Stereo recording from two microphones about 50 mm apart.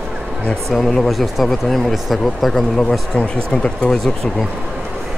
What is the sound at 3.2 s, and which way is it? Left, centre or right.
Speech, centre.